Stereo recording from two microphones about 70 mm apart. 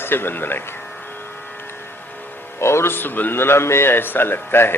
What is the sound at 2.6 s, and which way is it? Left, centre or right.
A man's voice, left.